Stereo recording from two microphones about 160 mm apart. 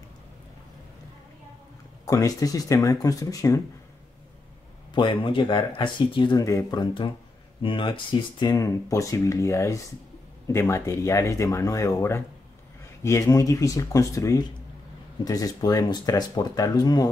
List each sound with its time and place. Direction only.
2.0 s speech: 20° left (ahead or behind)
4.9 s speech: 30° left (ahead or behind)